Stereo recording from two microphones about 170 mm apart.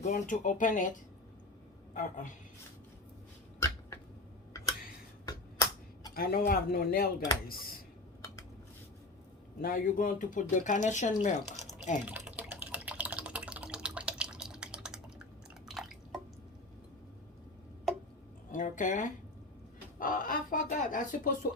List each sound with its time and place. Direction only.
0.0 s a woman's voice: 50° left (ahead or behind)
5.2 s a sound: 20° left (ahead or behind)
6.1 s speech: 60° left (ahead or behind)
9.6 s speech: 60° left (ahead or behind); by 11.3 s 45° left (ahead or behind)
12.0 s a sound: 10° right (ahead or behind)
15.7 s drip: centre (ahead or behind)
18.5 s speech: 50° left (ahead or behind)